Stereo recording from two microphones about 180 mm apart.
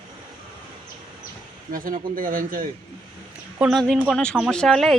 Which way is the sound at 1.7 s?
50° right (ahead or behind).